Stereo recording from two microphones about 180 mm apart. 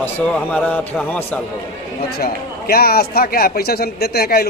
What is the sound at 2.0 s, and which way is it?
A man's voice, 55° left (ahead or behind).